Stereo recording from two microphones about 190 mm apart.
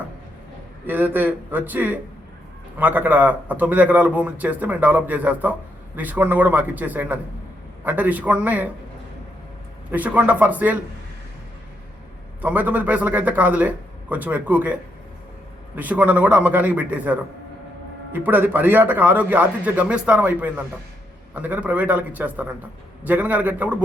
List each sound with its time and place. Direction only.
0.9 s a man's voice: 10° right (ahead or behind)
9.9 s a man's voice: 10° right (ahead or behind)
12.4 s a man's voice: 10° right (ahead or behind)